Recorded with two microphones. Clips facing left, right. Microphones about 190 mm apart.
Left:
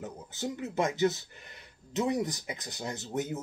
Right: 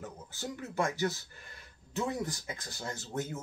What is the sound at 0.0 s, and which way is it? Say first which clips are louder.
Speech: left 5 dB; 20° left (ahead or behind).